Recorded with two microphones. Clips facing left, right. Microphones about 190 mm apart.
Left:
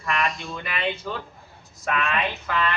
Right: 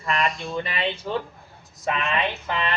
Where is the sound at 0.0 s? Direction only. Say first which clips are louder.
Right 1 dB; 30° right (ahead or behind).